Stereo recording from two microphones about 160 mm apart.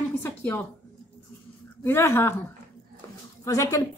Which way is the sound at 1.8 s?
15° left (ahead or behind).